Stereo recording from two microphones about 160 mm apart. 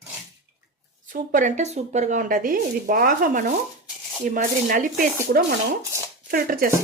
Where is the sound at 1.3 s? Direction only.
50° right (ahead or behind).